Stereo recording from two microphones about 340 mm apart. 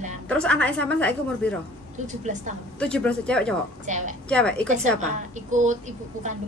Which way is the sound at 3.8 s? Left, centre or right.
Right.